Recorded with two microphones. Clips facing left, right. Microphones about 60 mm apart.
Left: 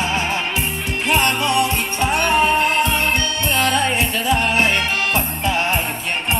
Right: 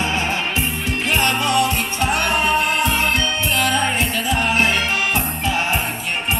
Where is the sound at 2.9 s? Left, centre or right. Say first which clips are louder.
Even; centre.